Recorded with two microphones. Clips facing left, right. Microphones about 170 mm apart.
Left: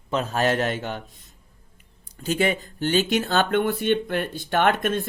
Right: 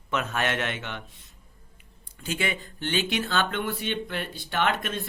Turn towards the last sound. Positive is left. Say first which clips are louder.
# left 6 dB
turn(degrees=50)  # may be behind; listen again after turning